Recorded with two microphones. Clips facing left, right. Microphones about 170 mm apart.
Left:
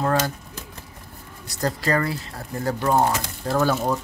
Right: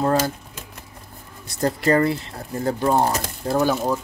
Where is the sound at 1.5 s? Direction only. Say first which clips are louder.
Right 4 dB; 25° right (ahead or behind).